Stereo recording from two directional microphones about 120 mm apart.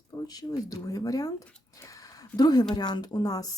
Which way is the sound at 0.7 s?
30° left (ahead or behind).